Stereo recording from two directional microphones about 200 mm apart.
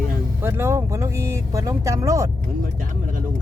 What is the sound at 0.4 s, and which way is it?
Speech, 10° right (ahead or behind).